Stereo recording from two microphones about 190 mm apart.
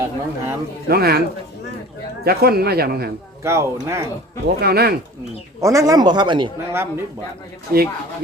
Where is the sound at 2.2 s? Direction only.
55° right (ahead or behind).